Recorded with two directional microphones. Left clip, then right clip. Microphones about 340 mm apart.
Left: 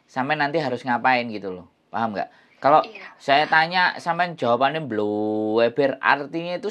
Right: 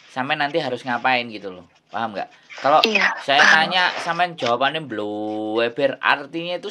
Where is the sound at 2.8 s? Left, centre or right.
Right.